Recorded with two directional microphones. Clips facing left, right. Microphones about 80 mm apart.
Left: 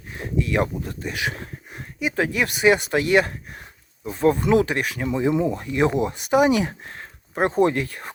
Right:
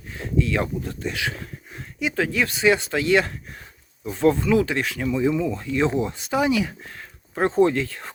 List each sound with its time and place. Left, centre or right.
0.1 s speech: left